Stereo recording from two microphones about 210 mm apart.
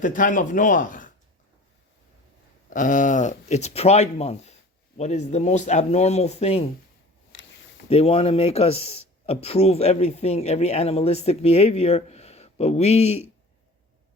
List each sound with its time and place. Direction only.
0.0 s speech: 40° left (ahead or behind)
2.6 s speech: 40° left (ahead or behind)
7.9 s speech: 30° left (ahead or behind)